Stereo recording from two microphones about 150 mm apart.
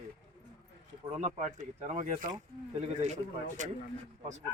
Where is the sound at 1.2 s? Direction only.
55° right (ahead or behind).